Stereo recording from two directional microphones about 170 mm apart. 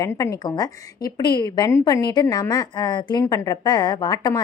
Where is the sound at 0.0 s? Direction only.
20° left (ahead or behind).